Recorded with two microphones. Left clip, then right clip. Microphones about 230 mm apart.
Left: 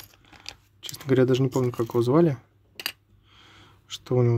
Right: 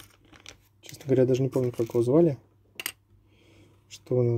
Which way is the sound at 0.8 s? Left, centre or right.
Centre.